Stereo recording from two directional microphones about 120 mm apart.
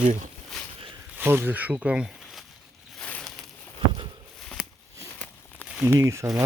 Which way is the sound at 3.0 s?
5° left (ahead or behind).